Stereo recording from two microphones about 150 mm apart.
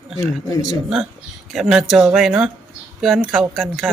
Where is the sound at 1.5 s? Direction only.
Centre (ahead or behind).